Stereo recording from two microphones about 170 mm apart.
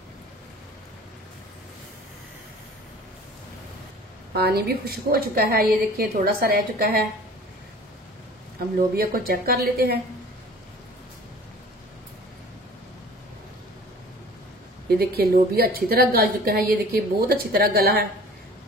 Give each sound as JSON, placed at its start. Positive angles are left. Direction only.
{"t": 4.3, "sound": "a woman's voice", "side_deg": -70}
{"t": 8.9, "sound": "a woman's voice", "side_deg": -60}
{"t": 15.0, "sound": "a woman's voice", "side_deg": -65}